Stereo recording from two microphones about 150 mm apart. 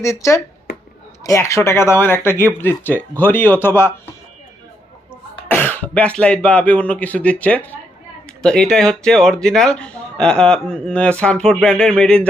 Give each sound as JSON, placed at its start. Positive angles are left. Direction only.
{"t": 0.0, "sound": "speech", "side_deg": 20}
{"t": 5.5, "sound": "speech", "side_deg": 10}